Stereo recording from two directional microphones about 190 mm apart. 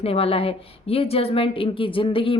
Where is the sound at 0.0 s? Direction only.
30° left (ahead or behind).